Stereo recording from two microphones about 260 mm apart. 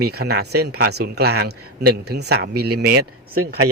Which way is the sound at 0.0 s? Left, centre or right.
Right.